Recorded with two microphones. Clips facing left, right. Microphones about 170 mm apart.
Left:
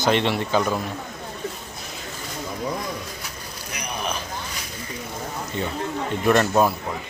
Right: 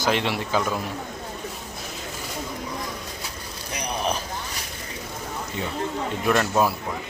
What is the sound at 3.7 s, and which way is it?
Vehicle, 35° right (ahead or behind).